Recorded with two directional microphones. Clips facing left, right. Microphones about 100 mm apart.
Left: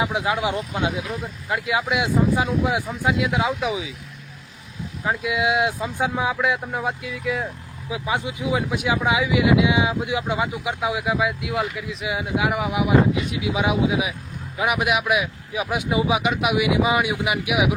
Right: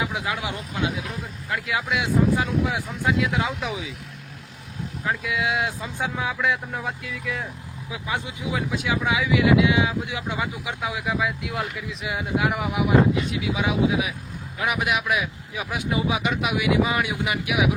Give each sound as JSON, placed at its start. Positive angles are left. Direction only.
{"t": 0.0, "sound": "speech", "side_deg": 25}
{"t": 5.0, "sound": "speech", "side_deg": 20}
{"t": 13.4, "sound": "speech", "side_deg": 15}